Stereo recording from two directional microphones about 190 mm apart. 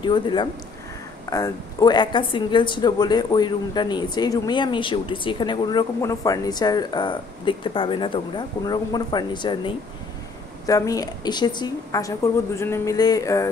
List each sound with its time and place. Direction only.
0.0 s a woman's voice: 25° left (ahead or behind)